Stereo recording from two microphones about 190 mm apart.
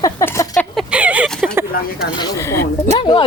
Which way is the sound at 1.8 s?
50° left (ahead or behind).